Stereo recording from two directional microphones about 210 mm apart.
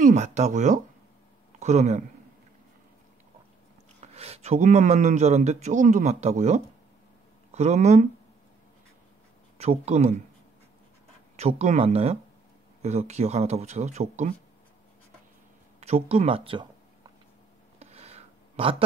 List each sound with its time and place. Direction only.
0.0 s a man's voice: 35° right (ahead or behind)
4.1 s a man's voice: 30° right (ahead or behind)
9.6 s a man's voice: 30° right (ahead or behind)
11.3 s a man's voice: 30° right (ahead or behind)
15.8 s speech: 30° right (ahead or behind)
17.7 s a sound: 30° right (ahead or behind)